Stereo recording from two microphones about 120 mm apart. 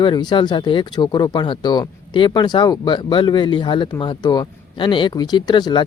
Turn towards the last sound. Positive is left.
turn(degrees=35)  # may be behind; listen again after turning